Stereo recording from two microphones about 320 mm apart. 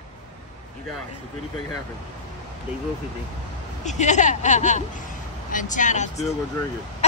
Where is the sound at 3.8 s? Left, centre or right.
Left.